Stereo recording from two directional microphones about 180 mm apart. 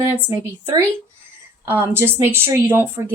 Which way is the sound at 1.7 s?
10° right (ahead or behind).